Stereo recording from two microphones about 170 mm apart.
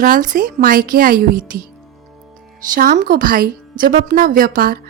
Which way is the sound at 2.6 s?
55° right (ahead or behind).